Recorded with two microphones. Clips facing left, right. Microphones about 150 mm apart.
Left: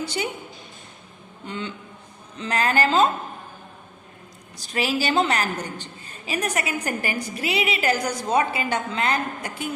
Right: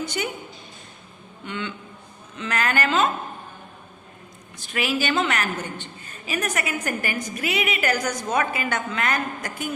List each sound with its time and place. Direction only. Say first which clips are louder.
0.0 s a woman's voice: even; 30° left (ahead or behind)
1.5 s a woman's voice: even; 35° left (ahead or behind)
4.5 s a woman's voice: left 1 dB; 35° left (ahead or behind)